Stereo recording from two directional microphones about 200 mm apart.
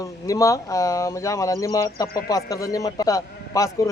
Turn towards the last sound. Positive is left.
turn(degrees=15)  # may be behind; listen again after turning